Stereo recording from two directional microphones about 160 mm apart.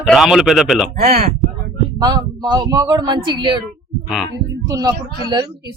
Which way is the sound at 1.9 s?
25° right (ahead or behind).